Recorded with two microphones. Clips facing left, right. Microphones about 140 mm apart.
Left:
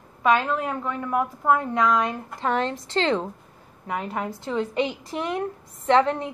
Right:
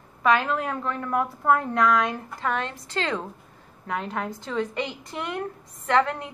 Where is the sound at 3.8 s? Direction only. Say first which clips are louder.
Left 1 dB; 10° left (ahead or behind).